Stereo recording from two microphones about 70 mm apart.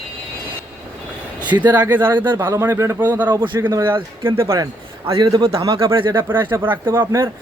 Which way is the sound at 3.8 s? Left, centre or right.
Right.